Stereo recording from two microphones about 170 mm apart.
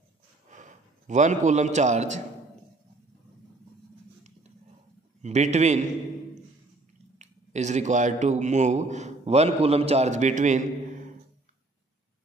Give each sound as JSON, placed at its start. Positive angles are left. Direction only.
{"t": 0.5, "sound": "a man's voice", "side_deg": -45}
{"t": 5.2, "sound": "a man's voice", "side_deg": -40}
{"t": 7.2, "sound": "a man's voice", "side_deg": -45}